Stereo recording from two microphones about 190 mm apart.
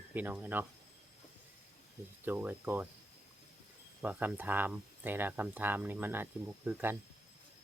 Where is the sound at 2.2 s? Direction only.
10° right (ahead or behind).